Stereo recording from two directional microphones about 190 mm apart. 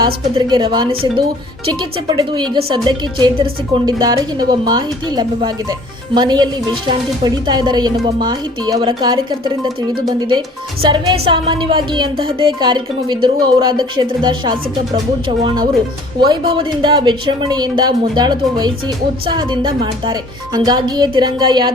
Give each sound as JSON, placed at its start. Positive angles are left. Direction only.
{"t": 0.0, "sound": "speech", "side_deg": -25}